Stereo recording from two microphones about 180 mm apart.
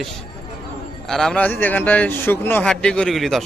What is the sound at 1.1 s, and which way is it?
A man's voice, 5° left (ahead or behind).